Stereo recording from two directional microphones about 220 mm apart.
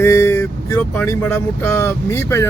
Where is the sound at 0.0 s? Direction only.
10° left (ahead or behind).